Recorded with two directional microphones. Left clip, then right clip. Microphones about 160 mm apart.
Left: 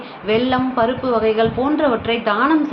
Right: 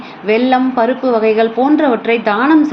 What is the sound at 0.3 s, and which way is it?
A woman's voice, 25° right (ahead or behind).